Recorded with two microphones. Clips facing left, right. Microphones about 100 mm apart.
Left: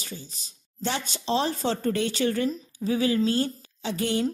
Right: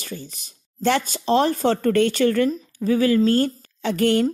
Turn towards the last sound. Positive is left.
turn(degrees=-60)  # may be behind; listen again after turning